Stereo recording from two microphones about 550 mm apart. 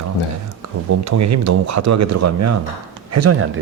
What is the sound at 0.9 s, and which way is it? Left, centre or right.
Speech, right.